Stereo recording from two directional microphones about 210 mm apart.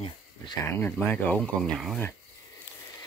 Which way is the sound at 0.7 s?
10° left (ahead or behind).